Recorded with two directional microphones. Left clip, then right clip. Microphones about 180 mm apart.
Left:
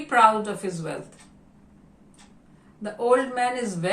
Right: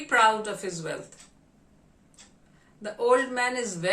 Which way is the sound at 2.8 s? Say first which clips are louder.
Left 2 dB; 25° right (ahead or behind).